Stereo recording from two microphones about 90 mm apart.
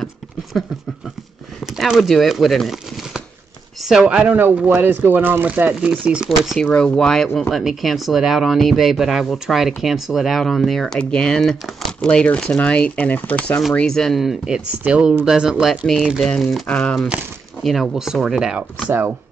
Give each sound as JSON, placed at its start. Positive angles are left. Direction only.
{"t": 0.0, "sound": "a sound", "side_deg": 0}
{"t": 1.8, "sound": "speech", "side_deg": 0}
{"t": 6.6, "sound": "speech", "side_deg": 10}
{"t": 13.7, "sound": "speech", "side_deg": 5}
{"t": 16.6, "sound": "speech", "side_deg": 15}
{"t": 17.6, "sound": "speech", "side_deg": -5}